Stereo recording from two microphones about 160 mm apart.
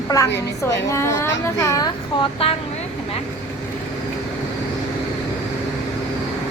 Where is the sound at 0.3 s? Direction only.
20° left (ahead or behind).